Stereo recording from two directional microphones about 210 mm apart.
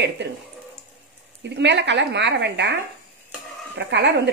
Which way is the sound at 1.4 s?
55° right (ahead or behind).